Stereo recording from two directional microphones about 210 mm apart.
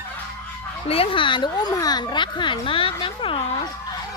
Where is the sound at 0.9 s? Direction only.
25° left (ahead or behind).